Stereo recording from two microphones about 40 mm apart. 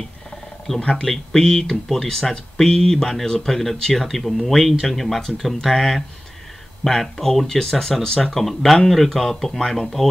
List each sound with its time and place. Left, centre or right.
0.7 s speech: left
1.0 s speech: centre